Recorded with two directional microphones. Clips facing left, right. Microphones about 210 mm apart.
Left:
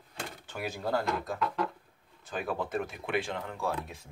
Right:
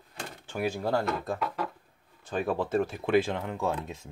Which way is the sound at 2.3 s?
30° right (ahead or behind).